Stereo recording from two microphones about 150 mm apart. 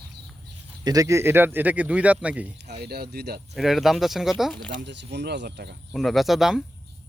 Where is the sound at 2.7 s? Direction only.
90° right.